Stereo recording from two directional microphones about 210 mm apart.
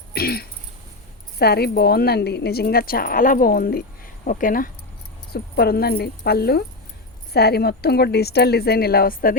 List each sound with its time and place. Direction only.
0.1 s throat clearing: 45° left (ahead or behind)
1.4 s a woman's voice: 50° left (ahead or behind)